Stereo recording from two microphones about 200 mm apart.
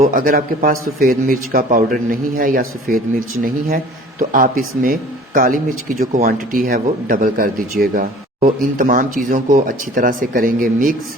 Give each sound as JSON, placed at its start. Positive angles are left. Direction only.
{"t": 0.0, "sound": "speech", "side_deg": -45}